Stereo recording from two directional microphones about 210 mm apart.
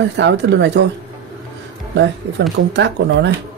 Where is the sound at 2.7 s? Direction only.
60° right (ahead or behind).